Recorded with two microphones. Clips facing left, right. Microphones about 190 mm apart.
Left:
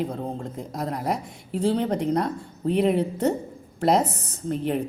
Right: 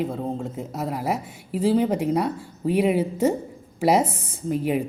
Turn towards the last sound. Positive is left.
turn(degrees=-10)  # may be behind; listen again after turning